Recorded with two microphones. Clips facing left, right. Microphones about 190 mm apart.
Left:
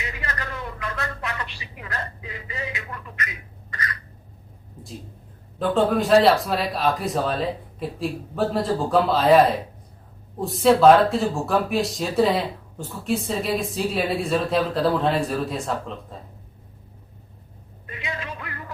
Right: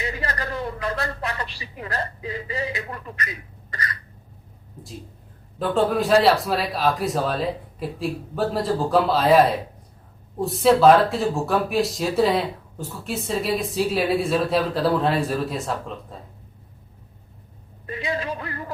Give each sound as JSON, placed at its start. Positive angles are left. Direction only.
{"t": 0.0, "sound": "a sound", "side_deg": -35}
{"t": 5.5, "sound": "speech", "side_deg": 0}
{"t": 17.8, "sound": "music", "side_deg": -35}